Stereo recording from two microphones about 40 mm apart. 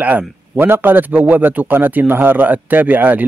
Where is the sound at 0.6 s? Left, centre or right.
Right.